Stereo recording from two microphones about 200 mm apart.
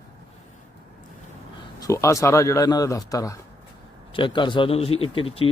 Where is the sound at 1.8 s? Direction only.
15° left (ahead or behind).